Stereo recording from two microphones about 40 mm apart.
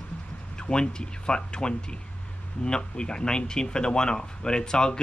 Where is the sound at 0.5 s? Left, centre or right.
Left.